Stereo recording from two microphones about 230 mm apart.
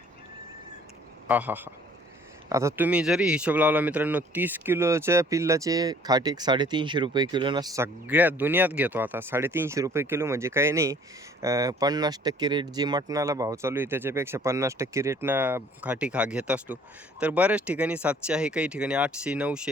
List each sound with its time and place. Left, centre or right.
1.3 s speech: centre